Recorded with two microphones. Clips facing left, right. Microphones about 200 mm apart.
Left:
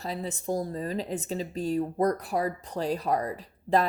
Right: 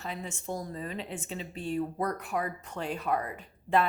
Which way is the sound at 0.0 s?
35° left (ahead or behind).